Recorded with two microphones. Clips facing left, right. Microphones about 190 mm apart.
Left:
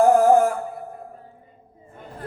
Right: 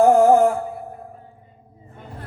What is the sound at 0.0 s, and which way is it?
Music, 25° right (ahead or behind).